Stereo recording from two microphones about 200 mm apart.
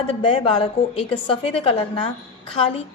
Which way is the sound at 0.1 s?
25° left (ahead or behind).